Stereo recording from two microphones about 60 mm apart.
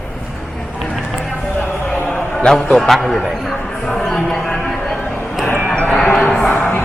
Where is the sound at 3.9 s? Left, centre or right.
Centre.